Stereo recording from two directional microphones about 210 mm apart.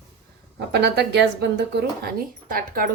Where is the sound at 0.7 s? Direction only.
50° right (ahead or behind).